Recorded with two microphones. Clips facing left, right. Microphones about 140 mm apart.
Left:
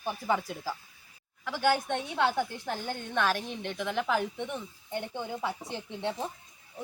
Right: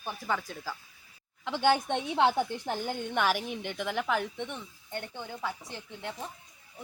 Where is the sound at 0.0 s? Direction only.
15° left (ahead or behind).